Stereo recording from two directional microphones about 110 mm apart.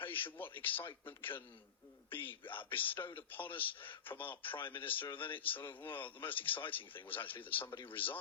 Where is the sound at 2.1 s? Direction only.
20° left (ahead or behind).